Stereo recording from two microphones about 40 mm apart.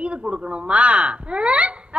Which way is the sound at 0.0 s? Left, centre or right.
Right.